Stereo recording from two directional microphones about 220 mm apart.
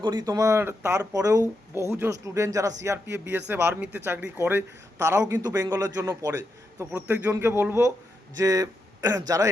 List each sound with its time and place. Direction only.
0.0 s speech: 20° right (ahead or behind)